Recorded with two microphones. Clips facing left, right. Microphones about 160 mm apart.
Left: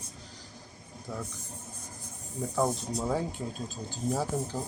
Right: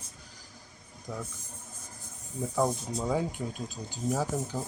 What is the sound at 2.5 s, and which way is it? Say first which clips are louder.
Speech: even; centre (ahead or behind).